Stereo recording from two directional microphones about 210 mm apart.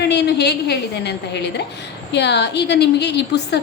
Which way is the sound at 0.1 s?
50° left (ahead or behind).